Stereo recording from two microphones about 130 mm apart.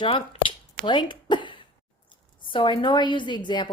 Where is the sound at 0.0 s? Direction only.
40° left (ahead or behind).